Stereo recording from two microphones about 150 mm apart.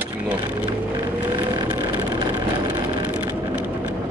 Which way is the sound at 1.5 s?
30° right (ahead or behind).